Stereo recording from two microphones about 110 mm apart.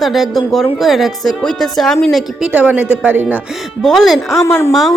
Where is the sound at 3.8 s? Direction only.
Centre (ahead or behind).